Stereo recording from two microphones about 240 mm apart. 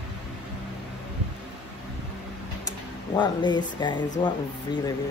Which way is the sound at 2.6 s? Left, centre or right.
Centre.